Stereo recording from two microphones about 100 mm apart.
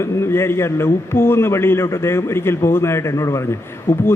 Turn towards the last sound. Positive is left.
turn(degrees=25)  # may be behind; listen again after turning